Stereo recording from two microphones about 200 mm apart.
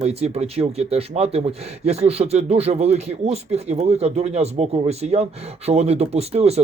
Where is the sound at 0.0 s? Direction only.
30° right (ahead or behind).